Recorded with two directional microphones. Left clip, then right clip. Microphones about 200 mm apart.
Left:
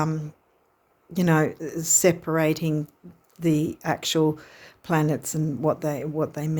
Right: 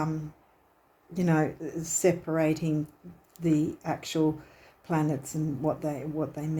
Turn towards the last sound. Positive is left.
turn(degrees=45)  # may be behind; listen again after turning